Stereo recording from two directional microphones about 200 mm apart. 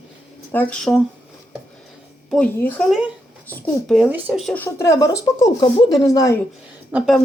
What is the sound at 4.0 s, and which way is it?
Speech, 10° right (ahead or behind).